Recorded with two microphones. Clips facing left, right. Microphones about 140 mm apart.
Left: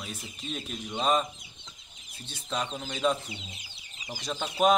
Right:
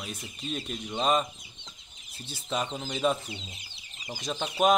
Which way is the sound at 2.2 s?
5° right (ahead or behind).